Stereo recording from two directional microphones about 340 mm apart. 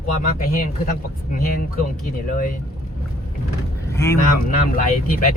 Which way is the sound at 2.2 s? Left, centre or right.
Left.